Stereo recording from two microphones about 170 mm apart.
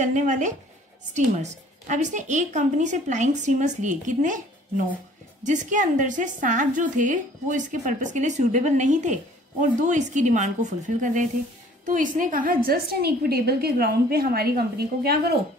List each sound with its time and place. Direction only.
0.0 s a woman's voice: 45° right (ahead or behind); by 14.5 s 65° right (ahead or behind)